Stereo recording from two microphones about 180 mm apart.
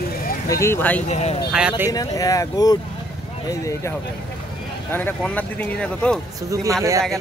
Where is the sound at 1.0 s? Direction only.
35° left (ahead or behind).